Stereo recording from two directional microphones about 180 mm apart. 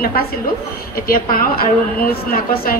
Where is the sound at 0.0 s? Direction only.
60° left (ahead or behind).